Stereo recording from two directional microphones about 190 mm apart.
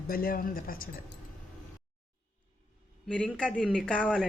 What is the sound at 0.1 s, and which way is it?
Speech, 50° left (ahead or behind).